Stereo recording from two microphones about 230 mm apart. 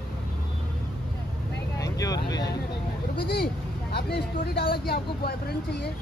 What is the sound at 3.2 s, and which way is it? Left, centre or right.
Speech, left.